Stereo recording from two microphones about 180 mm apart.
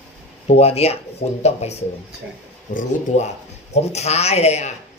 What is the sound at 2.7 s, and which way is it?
A man's voice, 40° left (ahead or behind).